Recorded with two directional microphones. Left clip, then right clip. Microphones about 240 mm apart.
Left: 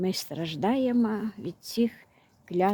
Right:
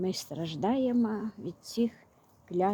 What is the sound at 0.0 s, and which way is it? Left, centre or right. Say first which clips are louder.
Speech: left 3 dB; centre.